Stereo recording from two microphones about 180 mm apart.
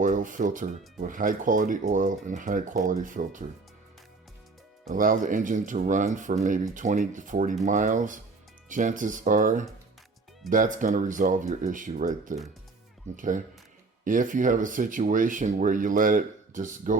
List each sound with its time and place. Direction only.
0.0 s speech: 45° right (ahead or behind)
4.9 s speech: 50° right (ahead or behind)